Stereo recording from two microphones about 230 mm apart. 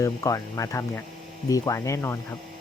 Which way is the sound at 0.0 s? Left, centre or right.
Centre.